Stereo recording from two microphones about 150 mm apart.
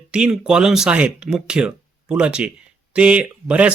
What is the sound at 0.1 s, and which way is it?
Speech, 5° right (ahead or behind).